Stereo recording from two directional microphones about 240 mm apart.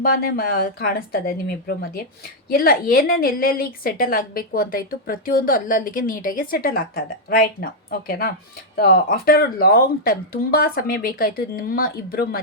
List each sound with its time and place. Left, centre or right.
0.0 s a woman's voice: left